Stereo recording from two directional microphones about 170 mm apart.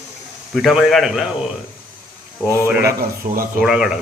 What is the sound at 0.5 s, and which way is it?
Speech, centre (ahead or behind).